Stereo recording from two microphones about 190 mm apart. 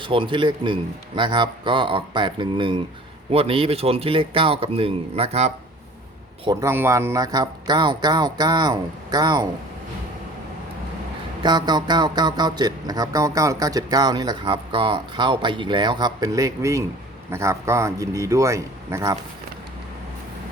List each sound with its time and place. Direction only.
0.0 s a man's voice: 25° right (ahead or behind)
6.4 s a man's voice: 20° right (ahead or behind)
11.4 s a man's voice: 25° right (ahead or behind)